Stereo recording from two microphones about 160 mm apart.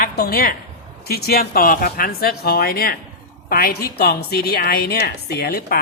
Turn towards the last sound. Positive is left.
turn(degrees=75)  # may be behind; listen again after turning